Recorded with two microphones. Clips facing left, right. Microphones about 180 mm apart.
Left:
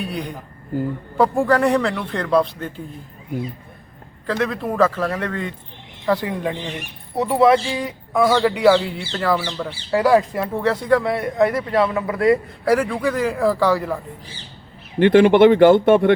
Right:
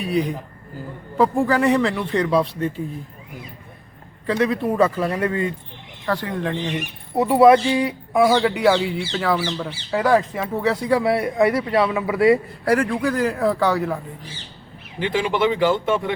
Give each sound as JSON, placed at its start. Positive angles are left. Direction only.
{"t": 1.1, "sound": "speech", "side_deg": 0}
{"t": 4.3, "sound": "speech", "side_deg": 0}
{"t": 6.1, "sound": "speech", "side_deg": 10}
{"t": 7.2, "sound": "speech", "side_deg": -10}
{"t": 14.9, "sound": "speech", "side_deg": 60}